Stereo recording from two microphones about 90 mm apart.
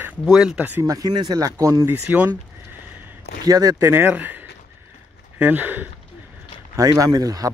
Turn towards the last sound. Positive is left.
turn(degrees=-45)  # may be behind; listen again after turning